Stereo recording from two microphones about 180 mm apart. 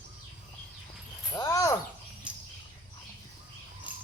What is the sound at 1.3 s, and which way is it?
Speech, 20° left (ahead or behind).